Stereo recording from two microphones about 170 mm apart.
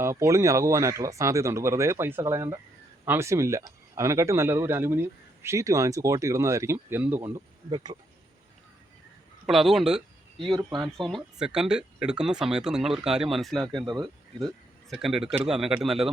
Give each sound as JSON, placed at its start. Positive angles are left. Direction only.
{"t": 0.0, "sound": "speech", "side_deg": -15}
{"t": 9.5, "sound": "speech", "side_deg": 0}
{"t": 10.3, "sound": "speech", "side_deg": -30}
{"t": 10.8, "sound": "speech", "side_deg": 0}
{"t": 13.7, "sound": "speech", "side_deg": -25}
{"t": 14.4, "sound": "speech", "side_deg": 0}